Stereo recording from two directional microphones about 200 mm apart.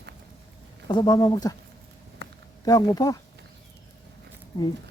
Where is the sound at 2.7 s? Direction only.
20° left (ahead or behind).